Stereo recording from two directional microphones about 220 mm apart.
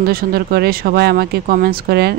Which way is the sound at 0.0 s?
45° right (ahead or behind).